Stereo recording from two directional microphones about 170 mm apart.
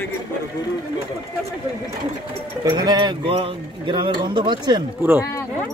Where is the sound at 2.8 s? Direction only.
25° right (ahead or behind).